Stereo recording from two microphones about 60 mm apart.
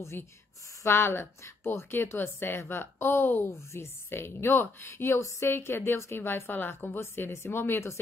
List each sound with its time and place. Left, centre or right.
0.8 s a woman's voice: left
3.4 s a woman's voice: left